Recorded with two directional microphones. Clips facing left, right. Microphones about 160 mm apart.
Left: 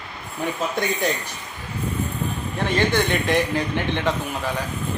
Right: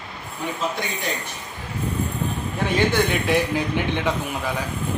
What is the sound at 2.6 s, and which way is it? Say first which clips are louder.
A man's voice: even; 10° right (ahead or behind).